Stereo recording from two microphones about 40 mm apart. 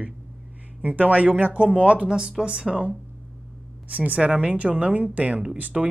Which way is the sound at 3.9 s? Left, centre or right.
Right.